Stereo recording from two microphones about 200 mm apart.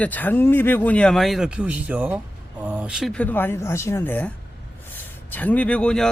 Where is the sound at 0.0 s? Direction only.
10° left (ahead or behind).